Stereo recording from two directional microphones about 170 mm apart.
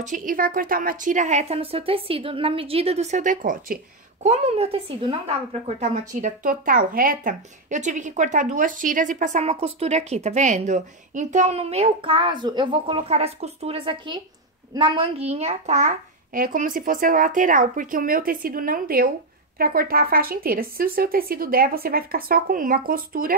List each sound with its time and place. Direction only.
0.0 s speech: 50° right (ahead or behind)
4.3 s a child's voice: 35° right (ahead or behind)
5.8 s a child's voice: 50° right (ahead or behind)